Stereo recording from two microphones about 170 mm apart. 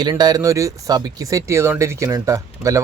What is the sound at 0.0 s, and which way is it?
Speech, 25° right (ahead or behind).